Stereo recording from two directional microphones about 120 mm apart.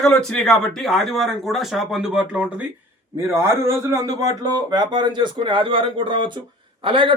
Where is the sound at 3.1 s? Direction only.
20° right (ahead or behind); by 7.1 s 45° right (ahead or behind).